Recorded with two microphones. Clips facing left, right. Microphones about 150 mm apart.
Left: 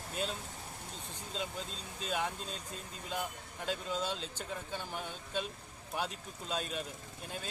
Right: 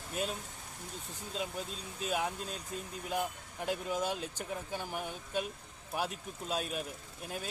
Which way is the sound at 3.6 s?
10° right (ahead or behind).